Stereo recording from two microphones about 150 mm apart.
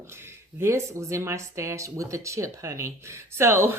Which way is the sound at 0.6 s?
20° right (ahead or behind).